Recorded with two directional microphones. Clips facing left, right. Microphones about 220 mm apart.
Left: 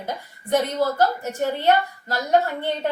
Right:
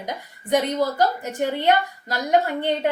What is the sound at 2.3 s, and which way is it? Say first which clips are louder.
Speech: right 1 dB; 15° right (ahead or behind).